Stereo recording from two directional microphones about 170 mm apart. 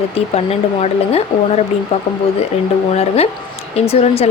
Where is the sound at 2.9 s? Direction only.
35° left (ahead or behind).